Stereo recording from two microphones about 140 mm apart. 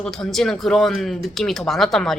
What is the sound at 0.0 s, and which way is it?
A woman's voice, 5° left (ahead or behind).